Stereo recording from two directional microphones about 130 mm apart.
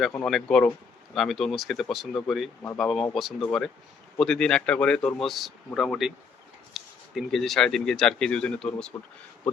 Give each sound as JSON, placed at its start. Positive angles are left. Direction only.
{"t": 0.3, "sound": "speech", "side_deg": 5}